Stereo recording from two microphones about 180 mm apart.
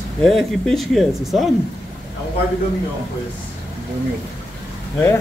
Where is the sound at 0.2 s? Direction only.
Centre (ahead or behind).